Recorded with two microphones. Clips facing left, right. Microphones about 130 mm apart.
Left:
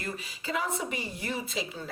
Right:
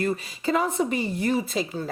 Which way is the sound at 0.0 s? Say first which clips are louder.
Right 11 dB; 40° right (ahead or behind).